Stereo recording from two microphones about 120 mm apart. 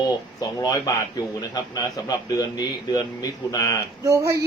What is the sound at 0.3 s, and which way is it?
Speech, 30° left (ahead or behind).